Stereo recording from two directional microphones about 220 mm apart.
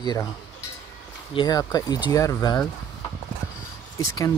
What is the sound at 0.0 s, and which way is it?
Speech, 20° left (ahead or behind).